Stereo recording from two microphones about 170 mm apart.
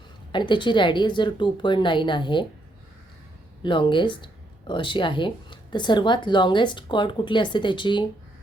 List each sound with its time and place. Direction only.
0.3 s speech: 30° left (ahead or behind)
3.6 s speech: 30° left (ahead or behind)